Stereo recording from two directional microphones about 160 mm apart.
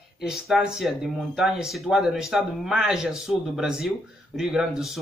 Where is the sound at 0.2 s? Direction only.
5° right (ahead or behind).